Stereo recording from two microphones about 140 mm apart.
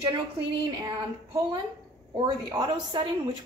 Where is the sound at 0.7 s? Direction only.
25° right (ahead or behind).